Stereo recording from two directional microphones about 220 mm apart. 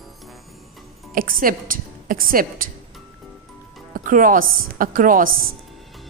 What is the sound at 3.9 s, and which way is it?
A woman's voice, 35° right (ahead or behind).